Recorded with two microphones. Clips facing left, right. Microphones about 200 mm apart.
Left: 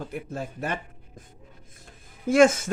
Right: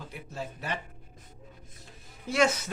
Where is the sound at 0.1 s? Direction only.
50° left (ahead or behind).